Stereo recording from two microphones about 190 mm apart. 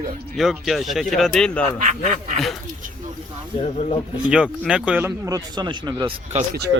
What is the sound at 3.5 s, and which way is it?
Speech, 35° left (ahead or behind).